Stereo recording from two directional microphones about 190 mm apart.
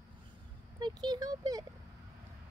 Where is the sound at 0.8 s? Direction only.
20° right (ahead or behind).